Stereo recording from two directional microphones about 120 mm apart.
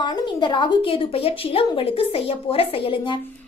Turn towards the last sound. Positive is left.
turn(degrees=45)  # may be behind; listen again after turning